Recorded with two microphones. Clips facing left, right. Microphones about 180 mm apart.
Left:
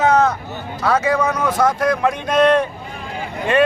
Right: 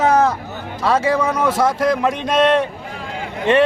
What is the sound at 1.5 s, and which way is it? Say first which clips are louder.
Speech: even; 5° right (ahead or behind).